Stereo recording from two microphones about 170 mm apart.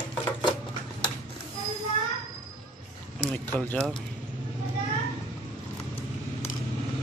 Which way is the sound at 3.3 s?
5° left (ahead or behind).